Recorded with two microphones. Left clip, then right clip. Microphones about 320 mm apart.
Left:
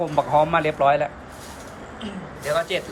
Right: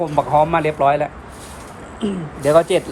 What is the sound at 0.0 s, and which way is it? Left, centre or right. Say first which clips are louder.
Speech: right 3 dB; centre.